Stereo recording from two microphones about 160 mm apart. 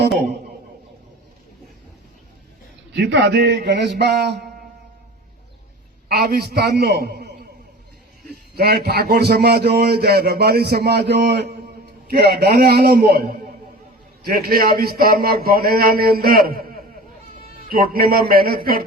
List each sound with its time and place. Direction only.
2.9 s a man's voice: 90° right
6.1 s a man's voice: 70° right (ahead or behind); by 11.5 s 90° right
12.0 s speech: 75° right (ahead or behind)